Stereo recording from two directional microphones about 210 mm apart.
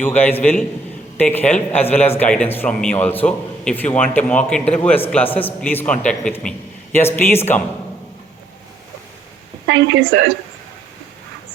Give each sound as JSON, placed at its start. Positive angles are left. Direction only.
{"t": 0.0, "sound": "speech", "side_deg": 10}
{"t": 9.6, "sound": "a woman's voice", "side_deg": -60}